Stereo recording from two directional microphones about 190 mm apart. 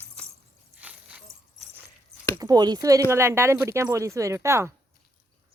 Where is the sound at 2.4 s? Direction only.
20° right (ahead or behind).